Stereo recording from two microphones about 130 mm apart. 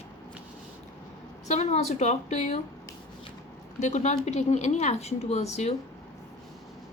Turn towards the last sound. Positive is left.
turn(degrees=60)  # may be behind; listen again after turning